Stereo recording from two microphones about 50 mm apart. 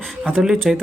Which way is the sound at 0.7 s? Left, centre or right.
Centre.